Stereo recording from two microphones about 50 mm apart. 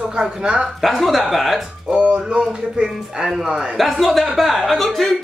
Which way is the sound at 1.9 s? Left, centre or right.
Right.